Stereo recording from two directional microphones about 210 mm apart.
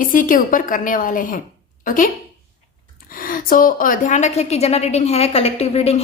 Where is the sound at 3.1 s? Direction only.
45° left (ahead or behind).